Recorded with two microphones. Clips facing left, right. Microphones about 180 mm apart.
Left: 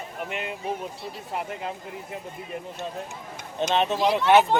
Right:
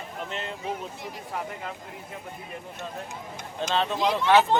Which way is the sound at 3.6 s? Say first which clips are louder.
Left 3 dB; 20° left (ahead or behind).